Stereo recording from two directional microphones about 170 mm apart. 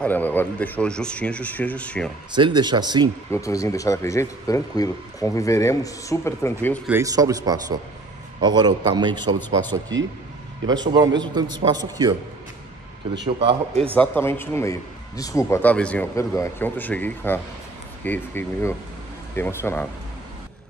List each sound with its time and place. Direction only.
0.0 s a man's voice: 10° left (ahead or behind)
2.3 s a man's voice: 25° right (ahead or behind)
3.3 s speech: 20° left (ahead or behind)
6.9 s a man's voice: 20° right (ahead or behind)
13.4 s speech: 35° right (ahead or behind)
13.9 s a man's voice: 10° left (ahead or behind)